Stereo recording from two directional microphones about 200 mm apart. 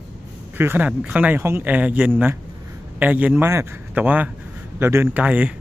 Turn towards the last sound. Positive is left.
turn(degrees=-5)  # may be behind; listen again after turning